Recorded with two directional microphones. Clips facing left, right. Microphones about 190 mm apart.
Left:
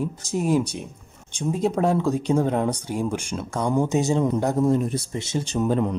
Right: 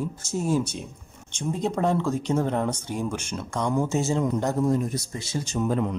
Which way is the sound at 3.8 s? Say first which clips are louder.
Left 5 dB; 20° left (ahead or behind).